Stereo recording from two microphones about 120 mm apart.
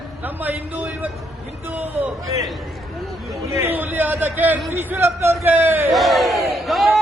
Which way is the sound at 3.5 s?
20° right (ahead or behind).